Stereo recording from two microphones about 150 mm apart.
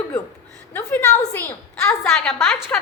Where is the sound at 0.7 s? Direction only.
15° left (ahead or behind).